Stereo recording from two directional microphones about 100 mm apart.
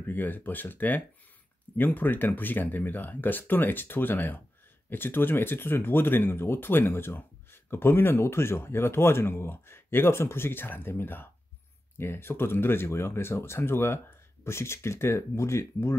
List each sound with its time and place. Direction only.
0.0 s speech: 20° left (ahead or behind)